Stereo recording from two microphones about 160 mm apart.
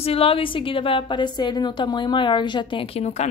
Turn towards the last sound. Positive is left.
turn(degrees=45)  # may be behind; listen again after turning